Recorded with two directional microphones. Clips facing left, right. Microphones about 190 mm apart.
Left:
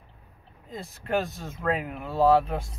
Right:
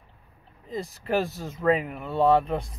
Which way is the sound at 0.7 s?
5° right (ahead or behind).